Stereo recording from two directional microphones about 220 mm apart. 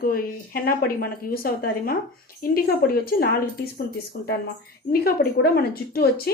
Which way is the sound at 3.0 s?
45° left (ahead or behind).